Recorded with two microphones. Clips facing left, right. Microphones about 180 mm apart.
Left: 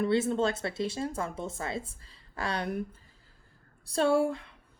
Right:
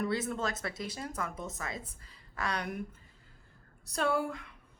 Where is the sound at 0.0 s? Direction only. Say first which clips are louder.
Left 7 dB; 25° left (ahead or behind).